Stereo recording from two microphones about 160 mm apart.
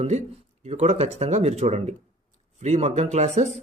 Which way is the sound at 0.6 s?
40° right (ahead or behind).